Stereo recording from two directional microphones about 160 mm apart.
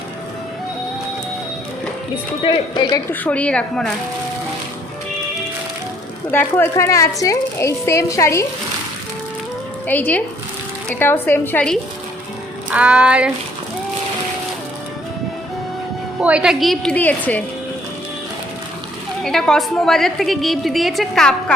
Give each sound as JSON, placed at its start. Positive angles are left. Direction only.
{"t": 2.4, "sound": "speech", "side_deg": 30}
{"t": 3.1, "sound": "a woman's voice", "side_deg": 10}
{"t": 6.3, "sound": "a woman's voice", "side_deg": 10}
{"t": 9.8, "sound": "a woman's voice", "side_deg": 10}
{"t": 12.7, "sound": "speech", "side_deg": -5}
{"t": 16.2, "sound": "a woman's voice", "side_deg": -5}
{"t": 19.2, "sound": "a woman's voice", "side_deg": 5}